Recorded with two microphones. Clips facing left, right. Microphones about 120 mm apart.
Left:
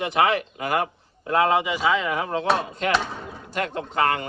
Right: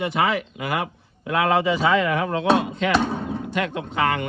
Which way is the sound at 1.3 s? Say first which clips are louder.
Right 1 dB; 30° left (ahead or behind).